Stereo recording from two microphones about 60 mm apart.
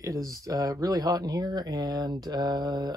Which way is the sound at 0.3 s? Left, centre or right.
Right.